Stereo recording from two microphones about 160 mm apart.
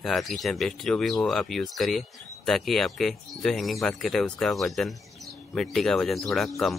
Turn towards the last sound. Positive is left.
turn(degrees=0)  # may be behind; listen again after turning